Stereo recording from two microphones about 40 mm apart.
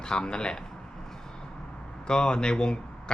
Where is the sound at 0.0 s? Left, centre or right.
Centre.